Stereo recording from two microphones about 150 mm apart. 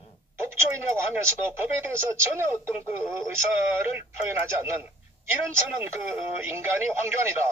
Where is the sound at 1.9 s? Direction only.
15° right (ahead or behind).